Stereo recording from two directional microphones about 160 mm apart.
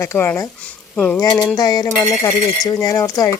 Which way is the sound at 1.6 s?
25° left (ahead or behind).